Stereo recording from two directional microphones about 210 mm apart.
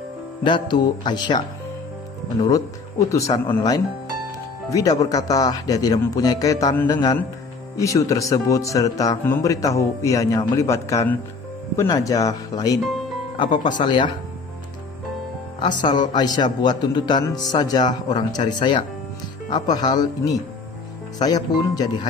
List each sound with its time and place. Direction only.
0.4 s speech: 20° left (ahead or behind)
2.4 s speech: 15° left (ahead or behind)
15.9 s a man's voice: 35° left (ahead or behind)
16.2 s speech: 20° left (ahead or behind)